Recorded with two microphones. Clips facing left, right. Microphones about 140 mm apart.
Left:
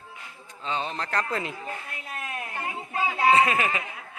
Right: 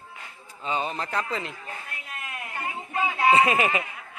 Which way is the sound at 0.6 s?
5° right (ahead or behind).